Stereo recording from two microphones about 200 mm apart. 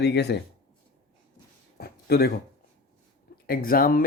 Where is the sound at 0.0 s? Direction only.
55° left (ahead or behind).